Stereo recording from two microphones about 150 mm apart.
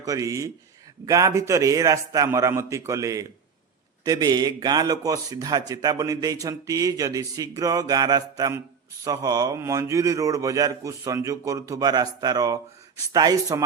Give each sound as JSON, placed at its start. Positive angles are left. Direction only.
{"t": 0.0, "sound": "a man's voice", "side_deg": -20}